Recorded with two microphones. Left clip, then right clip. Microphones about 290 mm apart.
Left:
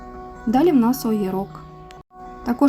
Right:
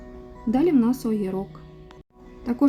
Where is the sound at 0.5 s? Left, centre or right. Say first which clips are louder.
Left 4 dB; centre.